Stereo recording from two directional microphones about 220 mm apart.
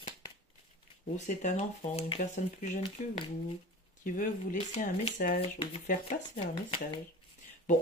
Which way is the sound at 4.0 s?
35° left (ahead or behind).